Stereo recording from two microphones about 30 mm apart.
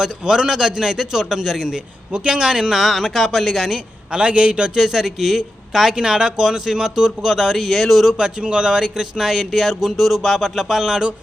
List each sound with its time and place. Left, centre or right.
0.0 s a man's voice: right
2.1 s a man's voice: right
2.6 s speech: centre
4.1 s a man's voice: right
4.8 s speech: centre
5.9 s speech: right
7.7 s speech: centre
8.1 s a man's voice: right
9.1 s speech: centre